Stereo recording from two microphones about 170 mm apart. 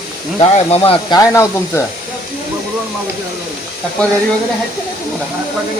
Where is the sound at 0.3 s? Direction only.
35° left (ahead or behind).